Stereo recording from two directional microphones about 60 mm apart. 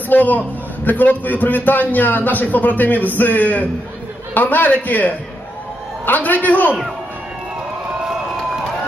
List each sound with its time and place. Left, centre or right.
0.1 s a man's voice: left